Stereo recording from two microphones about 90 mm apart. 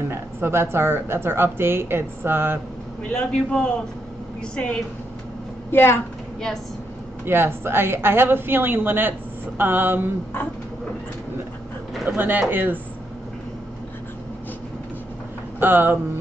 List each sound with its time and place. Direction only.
0.1 s a woman's voice: 25° right (ahead or behind)
3.1 s a man's voice: 10° left (ahead or behind)
5.7 s a woman's voice: 25° left (ahead or behind)
7.2 s a woman's voice: 25° right (ahead or behind)
12.2 s a woman's voice: 20° right (ahead or behind)
15.6 s a woman's voice: 25° right (ahead or behind)